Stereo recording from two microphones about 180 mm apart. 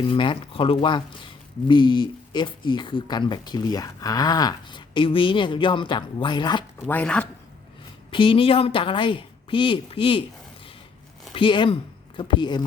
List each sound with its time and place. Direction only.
0.1 s speech: 30° left (ahead or behind)
6.8 s speech: 10° left (ahead or behind)
8.1 s speech: 30° left (ahead or behind)
11.3 s speech: 25° left (ahead or behind)